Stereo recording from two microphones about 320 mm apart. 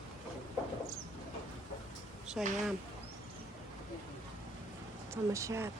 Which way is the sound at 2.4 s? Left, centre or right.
Centre.